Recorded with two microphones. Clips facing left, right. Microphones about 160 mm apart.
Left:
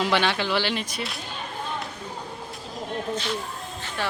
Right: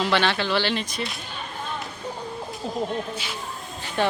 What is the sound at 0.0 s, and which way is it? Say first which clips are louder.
Speech: right 1 dB; 15° left (ahead or behind).